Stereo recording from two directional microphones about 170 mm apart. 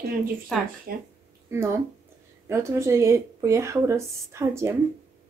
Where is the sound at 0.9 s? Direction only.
60° right (ahead or behind).